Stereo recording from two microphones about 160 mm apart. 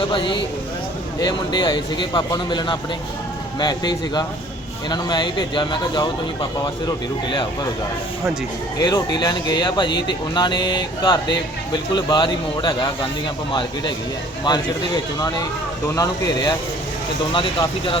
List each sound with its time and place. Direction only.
0.0 s speech: 30° left (ahead or behind)
8.8 s speech: 25° left (ahead or behind)
15.9 s speech: 25° left (ahead or behind)